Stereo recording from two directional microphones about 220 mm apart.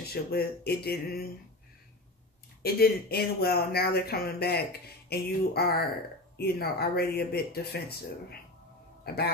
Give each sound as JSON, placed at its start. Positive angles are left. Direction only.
{"t": 0.1, "sound": "speech", "side_deg": 45}
{"t": 2.6, "sound": "speech", "side_deg": 45}
{"t": 9.0, "sound": "speech", "side_deg": 45}